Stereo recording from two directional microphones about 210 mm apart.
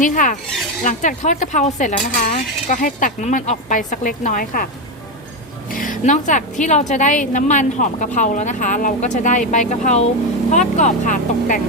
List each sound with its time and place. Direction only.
0.0 s a woman's voice: 40° left (ahead or behind)
5.7 s a woman's voice: 40° left (ahead or behind)